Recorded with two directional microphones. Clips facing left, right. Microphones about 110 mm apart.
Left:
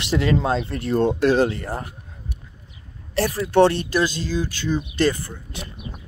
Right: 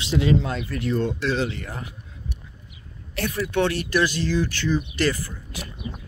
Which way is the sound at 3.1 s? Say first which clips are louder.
Left 7 dB; 35° left (ahead or behind).